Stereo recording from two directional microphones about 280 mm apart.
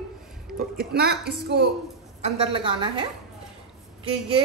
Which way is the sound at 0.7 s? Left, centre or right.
Right.